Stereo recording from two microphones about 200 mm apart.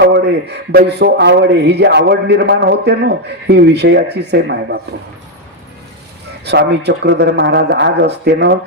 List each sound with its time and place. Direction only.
0.0 s a man's voice: 55° right (ahead or behind)
6.4 s a man's voice: 55° right (ahead or behind)